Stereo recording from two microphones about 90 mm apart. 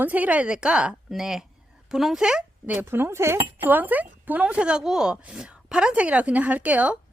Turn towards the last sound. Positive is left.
turn(degrees=-15)  # may be behind; listen again after turning